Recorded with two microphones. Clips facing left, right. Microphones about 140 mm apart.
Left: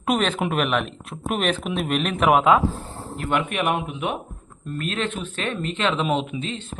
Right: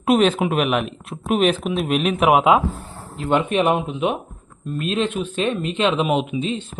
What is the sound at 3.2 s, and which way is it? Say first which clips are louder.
A man's voice: right 5 dB; 25° right (ahead or behind).